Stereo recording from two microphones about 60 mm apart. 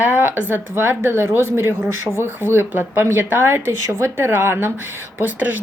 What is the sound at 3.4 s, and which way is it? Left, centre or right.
Speech, right.